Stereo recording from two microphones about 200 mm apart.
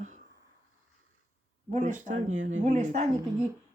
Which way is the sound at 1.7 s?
40° right (ahead or behind).